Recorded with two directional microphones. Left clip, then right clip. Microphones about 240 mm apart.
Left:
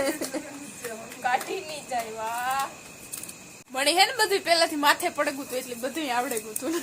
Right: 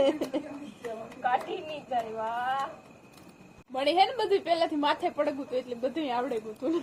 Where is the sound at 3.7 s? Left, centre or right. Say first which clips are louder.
Left 2 dB; centre.